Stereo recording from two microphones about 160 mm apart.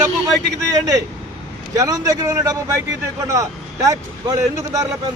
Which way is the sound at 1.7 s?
20° right (ahead or behind).